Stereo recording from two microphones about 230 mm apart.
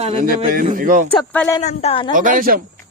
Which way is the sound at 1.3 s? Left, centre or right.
Centre.